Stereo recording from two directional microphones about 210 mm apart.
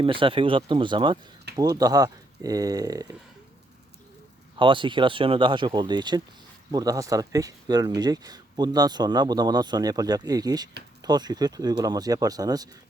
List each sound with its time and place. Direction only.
0.0 s speech: 25° right (ahead or behind)
4.5 s speech: 25° right (ahead or behind)